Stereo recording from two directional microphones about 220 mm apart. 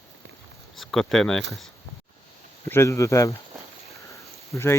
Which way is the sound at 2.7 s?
15° left (ahead or behind).